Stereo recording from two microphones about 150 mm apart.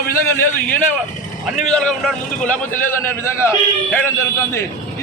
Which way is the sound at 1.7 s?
5° left (ahead or behind).